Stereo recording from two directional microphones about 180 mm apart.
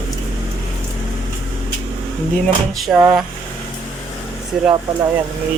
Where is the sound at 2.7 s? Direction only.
Centre (ahead or behind).